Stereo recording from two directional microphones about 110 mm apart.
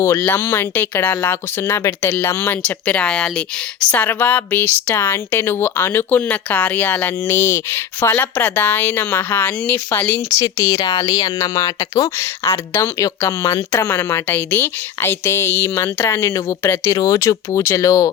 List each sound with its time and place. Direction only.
0.0 s speech: 25° left (ahead or behind)